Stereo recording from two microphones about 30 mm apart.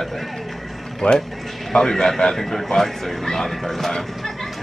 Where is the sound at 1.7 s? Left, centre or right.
Centre.